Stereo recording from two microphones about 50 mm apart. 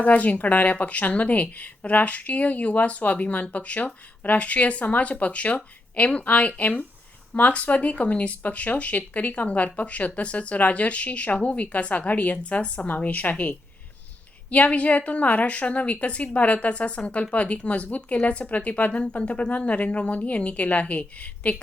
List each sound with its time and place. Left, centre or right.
0.0 s speech: left